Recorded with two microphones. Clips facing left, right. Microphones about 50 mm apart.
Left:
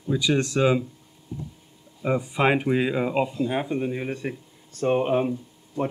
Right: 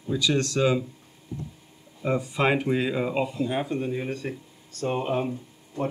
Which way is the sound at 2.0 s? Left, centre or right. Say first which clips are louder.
Left 2 dB; centre.